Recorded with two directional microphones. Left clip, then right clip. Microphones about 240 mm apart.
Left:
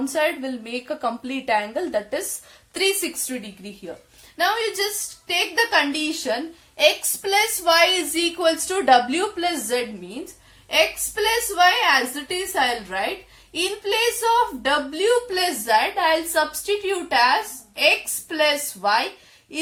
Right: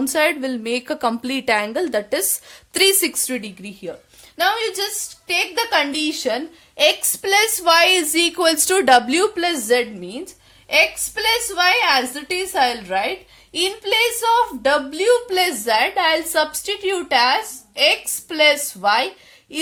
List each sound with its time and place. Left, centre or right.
0.1 s a woman's voice: right